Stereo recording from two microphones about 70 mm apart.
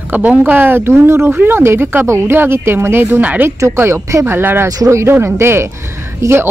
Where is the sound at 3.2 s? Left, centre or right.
Right.